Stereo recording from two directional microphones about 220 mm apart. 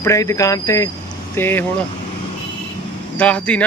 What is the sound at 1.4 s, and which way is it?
Speech, 10° left (ahead or behind).